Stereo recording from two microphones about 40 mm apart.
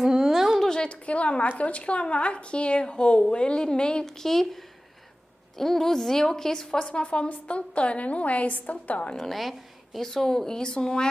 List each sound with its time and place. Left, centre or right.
0.0 s a sound: centre
0.7 s a woman's voice: left
4.0 s a woman's voice: centre; by 9.1 s left
9.1 s a woman's voice: centre
10.0 s speech: centre